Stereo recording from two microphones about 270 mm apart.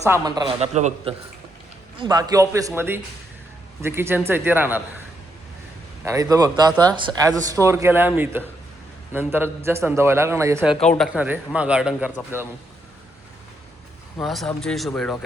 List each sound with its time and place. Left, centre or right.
0.0 s a man's voice: centre
2.0 s speech: centre
6.1 s speech: centre
10.8 s speech: centre
14.2 s speech: centre